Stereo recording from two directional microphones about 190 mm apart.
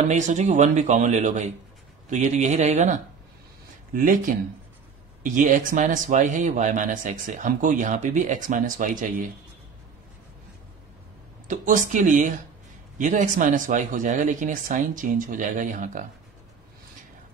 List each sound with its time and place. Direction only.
0.1 s a man's voice: 40° right (ahead or behind)
11.4 s speech: 45° right (ahead or behind)